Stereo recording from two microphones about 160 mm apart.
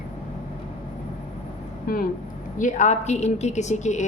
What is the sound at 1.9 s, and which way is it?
Speech, 65° left (ahead or behind).